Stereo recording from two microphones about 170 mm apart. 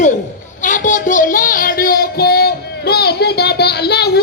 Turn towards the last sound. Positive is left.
turn(degrees=70)  # may be behind; listen again after turning